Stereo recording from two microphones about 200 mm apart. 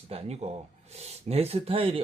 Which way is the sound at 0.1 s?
30° right (ahead or behind).